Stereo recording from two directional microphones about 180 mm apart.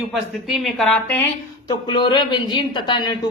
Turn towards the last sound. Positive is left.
turn(degrees=25)  # may be behind; listen again after turning